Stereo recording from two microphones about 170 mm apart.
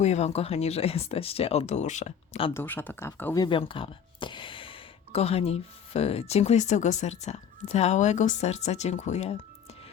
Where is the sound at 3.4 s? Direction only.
30° left (ahead or behind).